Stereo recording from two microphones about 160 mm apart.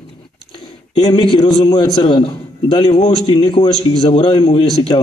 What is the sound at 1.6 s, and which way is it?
A man's voice, 25° left (ahead or behind).